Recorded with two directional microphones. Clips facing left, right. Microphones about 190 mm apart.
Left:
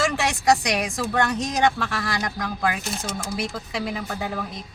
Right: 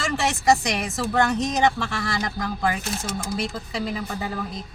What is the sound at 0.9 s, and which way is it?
Speech, 5° right (ahead or behind).